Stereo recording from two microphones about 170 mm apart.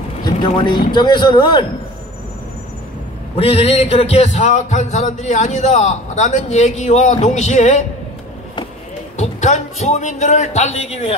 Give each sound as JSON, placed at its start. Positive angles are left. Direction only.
{"t": 0.2, "sound": "speech", "side_deg": 25}
{"t": 3.3, "sound": "speech", "side_deg": 35}
{"t": 9.1, "sound": "speech", "side_deg": 45}